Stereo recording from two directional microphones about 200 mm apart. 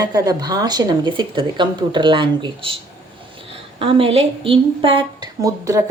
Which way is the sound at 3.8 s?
30° right (ahead or behind).